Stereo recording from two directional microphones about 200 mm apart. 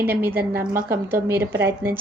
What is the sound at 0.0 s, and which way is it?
A woman's voice, 10° right (ahead or behind).